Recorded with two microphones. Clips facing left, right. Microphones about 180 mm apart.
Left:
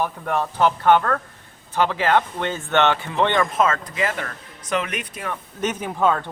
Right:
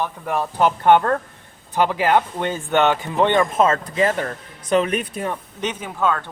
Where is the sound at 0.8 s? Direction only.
20° right (ahead or behind).